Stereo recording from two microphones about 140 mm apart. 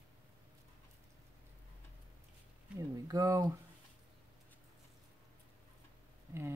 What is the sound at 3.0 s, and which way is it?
Speech, 25° right (ahead or behind).